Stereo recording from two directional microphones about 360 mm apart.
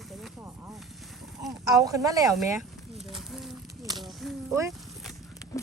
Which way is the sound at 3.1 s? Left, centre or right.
Centre.